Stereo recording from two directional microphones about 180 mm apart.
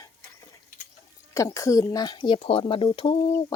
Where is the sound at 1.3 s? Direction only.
15° left (ahead or behind).